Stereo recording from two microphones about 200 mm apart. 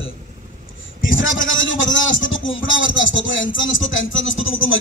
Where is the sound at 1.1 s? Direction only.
75° left (ahead or behind).